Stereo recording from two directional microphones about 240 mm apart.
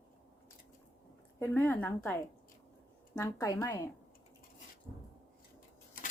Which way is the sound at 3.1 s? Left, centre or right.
Centre.